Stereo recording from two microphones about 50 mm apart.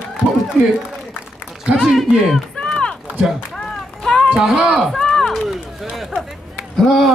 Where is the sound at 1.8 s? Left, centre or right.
Centre.